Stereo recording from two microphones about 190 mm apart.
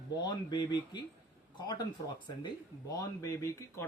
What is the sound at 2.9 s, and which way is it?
Speech, 15° left (ahead or behind).